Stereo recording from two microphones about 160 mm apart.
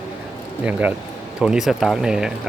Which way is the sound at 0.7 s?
10° right (ahead or behind).